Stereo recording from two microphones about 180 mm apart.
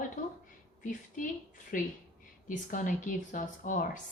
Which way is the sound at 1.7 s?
50° left (ahead or behind).